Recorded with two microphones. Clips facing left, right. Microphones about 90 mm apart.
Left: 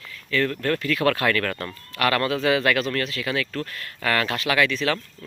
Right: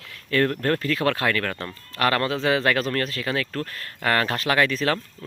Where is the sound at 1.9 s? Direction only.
30° right (ahead or behind).